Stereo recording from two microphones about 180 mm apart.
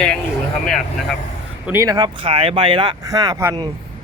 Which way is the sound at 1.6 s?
15° right (ahead or behind).